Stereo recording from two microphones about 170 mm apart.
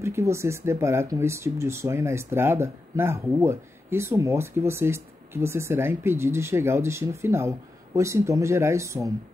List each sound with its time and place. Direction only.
0.0 s speech: 15° right (ahead or behind)